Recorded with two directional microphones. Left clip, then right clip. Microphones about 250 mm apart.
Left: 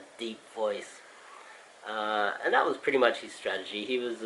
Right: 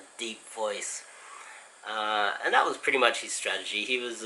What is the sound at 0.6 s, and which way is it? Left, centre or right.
Speech, left.